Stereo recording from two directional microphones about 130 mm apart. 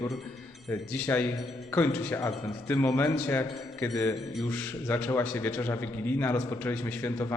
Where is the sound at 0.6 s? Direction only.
15° left (ahead or behind).